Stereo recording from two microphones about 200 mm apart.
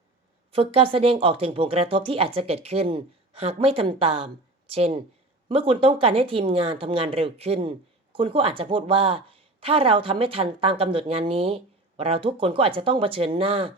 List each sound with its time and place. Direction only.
0.5 s speech: 25° right (ahead or behind)